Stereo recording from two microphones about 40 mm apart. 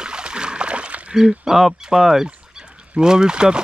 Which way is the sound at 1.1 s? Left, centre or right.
Centre.